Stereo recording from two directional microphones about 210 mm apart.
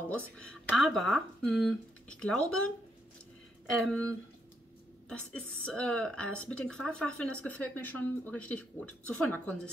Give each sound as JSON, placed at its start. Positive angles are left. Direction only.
{"t": 0.1, "sound": "a woman's voice", "side_deg": 5}
{"t": 3.7, "sound": "a woman's voice", "side_deg": 0}
{"t": 5.1, "sound": "a woman's voice", "side_deg": 5}